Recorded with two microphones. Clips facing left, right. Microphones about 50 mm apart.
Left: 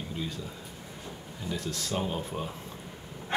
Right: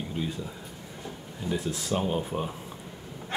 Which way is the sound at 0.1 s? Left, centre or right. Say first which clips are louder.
Right 3 dB; centre.